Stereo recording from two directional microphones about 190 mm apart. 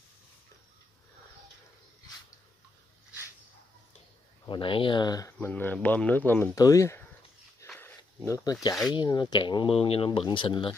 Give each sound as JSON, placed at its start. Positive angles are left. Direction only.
{"t": 4.5, "sound": "speech", "side_deg": 25}
{"t": 7.6, "sound": "a sound", "side_deg": 10}
{"t": 8.3, "sound": "speech", "side_deg": 15}